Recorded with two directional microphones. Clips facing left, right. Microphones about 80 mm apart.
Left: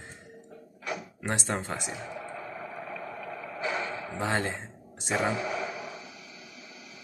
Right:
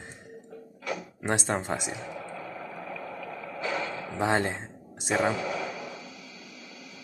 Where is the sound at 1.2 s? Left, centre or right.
Right.